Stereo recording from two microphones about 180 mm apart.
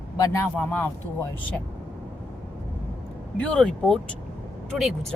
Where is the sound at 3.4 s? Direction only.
5° left (ahead or behind).